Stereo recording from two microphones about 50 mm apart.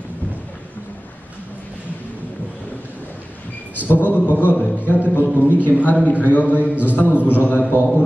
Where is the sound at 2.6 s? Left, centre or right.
Left.